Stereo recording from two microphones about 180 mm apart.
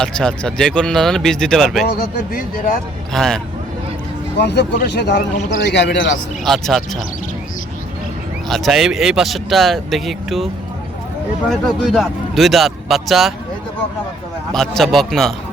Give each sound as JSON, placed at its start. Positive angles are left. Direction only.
{"t": 0.0, "sound": "speech", "side_deg": 5}
{"t": 2.0, "sound": "speech", "side_deg": 55}
{"t": 3.1, "sound": "speech", "side_deg": 0}
{"t": 4.4, "sound": "speech", "side_deg": 70}
{"t": 6.4, "sound": "speech", "side_deg": 0}
{"t": 8.4, "sound": "speech", "side_deg": 0}
{"t": 14.8, "sound": "speech", "side_deg": 0}